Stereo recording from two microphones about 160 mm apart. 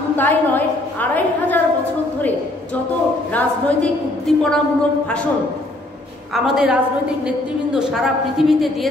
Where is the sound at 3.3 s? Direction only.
5° left (ahead or behind).